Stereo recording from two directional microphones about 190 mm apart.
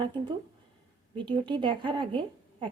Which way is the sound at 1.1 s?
25° right (ahead or behind).